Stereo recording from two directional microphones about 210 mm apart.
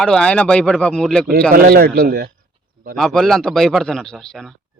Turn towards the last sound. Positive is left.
turn(degrees=0)  # may be behind; listen again after turning